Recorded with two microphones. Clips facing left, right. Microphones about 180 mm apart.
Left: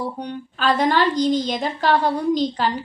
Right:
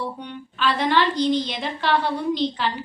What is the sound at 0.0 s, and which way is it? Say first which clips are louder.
A woman's voice: left 3 dB; 40° left (ahead or behind).